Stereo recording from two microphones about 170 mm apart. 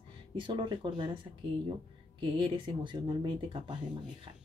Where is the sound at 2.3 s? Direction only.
30° right (ahead or behind).